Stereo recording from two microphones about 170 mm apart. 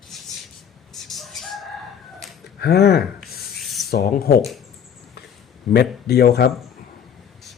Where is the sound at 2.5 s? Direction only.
70° left (ahead or behind).